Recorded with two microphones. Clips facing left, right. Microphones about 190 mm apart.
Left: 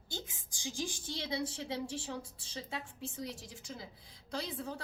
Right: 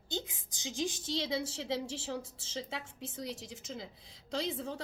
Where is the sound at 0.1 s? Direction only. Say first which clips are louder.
Right 5 dB; 20° right (ahead or behind).